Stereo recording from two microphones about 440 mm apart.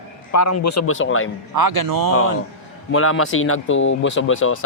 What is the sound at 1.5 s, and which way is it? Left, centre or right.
Speech, right.